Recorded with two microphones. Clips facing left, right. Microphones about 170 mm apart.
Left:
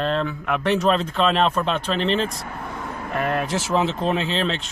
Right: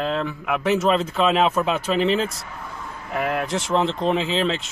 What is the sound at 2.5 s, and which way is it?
Vehicle, 60° left (ahead or behind).